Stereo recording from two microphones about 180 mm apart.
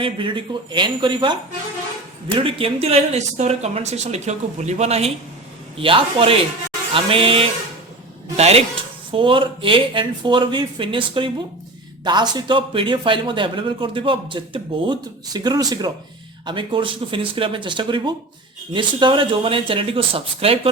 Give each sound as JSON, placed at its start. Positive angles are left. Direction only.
{"t": 0.0, "sound": "speech", "side_deg": -25}